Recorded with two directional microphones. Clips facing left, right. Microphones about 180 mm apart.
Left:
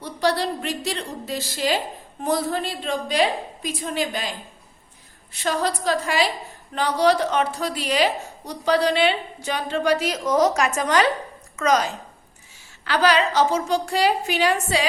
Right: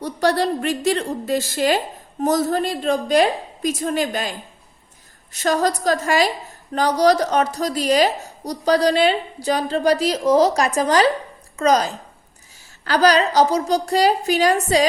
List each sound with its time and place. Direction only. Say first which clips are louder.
0.0 s a woman's voice: right 4 dB; 50° right (ahead or behind)
5.3 s a woman's voice: right 5 dB; 45° right (ahead or behind)